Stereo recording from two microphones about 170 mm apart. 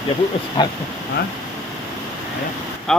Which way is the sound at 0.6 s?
25° left (ahead or behind).